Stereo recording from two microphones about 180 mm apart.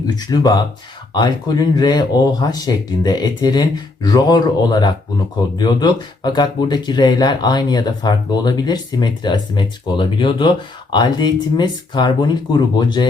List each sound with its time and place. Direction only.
0.2 s speech: 20° left (ahead or behind)